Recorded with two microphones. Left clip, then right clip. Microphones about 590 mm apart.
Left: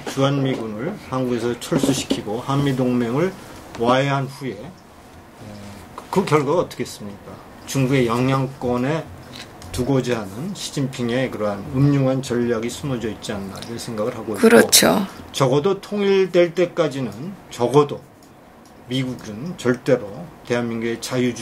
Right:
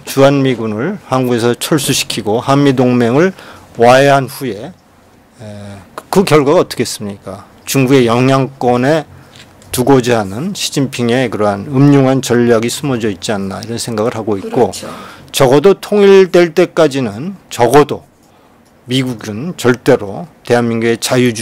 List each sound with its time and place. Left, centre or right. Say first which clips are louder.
0.1 s speech: right 12 dB; right
6.0 s speech: right 9 dB; right
15.3 s speech: right 11 dB; right